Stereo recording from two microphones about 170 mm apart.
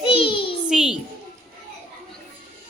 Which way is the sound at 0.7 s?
5° right (ahead or behind).